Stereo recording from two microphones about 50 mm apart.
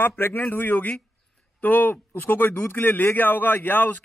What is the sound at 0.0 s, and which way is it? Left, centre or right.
A man's voice, left.